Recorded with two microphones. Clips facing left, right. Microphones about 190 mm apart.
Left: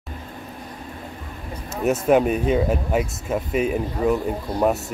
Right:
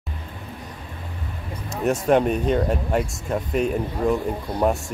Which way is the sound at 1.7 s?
5° left (ahead or behind).